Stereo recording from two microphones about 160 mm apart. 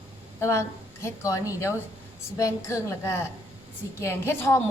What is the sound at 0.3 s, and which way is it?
A woman's voice, 15° left (ahead or behind).